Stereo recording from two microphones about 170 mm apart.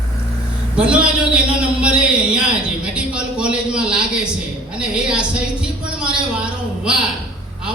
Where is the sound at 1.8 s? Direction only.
5° right (ahead or behind).